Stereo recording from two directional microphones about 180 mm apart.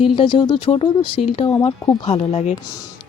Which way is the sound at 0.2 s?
30° left (ahead or behind).